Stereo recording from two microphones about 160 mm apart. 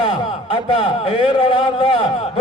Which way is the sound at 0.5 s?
35° left (ahead or behind).